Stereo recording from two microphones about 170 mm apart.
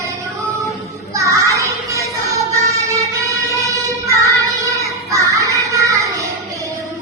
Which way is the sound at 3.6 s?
20° right (ahead or behind).